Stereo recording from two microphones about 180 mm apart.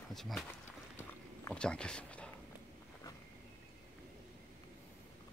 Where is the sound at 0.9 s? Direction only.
10° left (ahead or behind).